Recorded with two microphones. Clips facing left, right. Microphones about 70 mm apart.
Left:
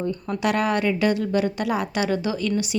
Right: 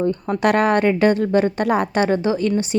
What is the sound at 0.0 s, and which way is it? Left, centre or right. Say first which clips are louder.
A woman's voice: right 6 dB; right.